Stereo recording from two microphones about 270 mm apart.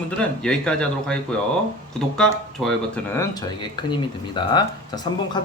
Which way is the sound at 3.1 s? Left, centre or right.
Centre.